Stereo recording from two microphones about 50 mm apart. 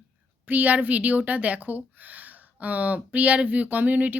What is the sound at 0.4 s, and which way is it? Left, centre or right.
Speech, right.